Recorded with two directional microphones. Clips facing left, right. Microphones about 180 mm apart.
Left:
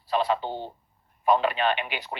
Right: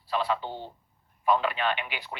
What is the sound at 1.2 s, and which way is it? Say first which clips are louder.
Radio: left 3 dB; 25° left (ahead or behind).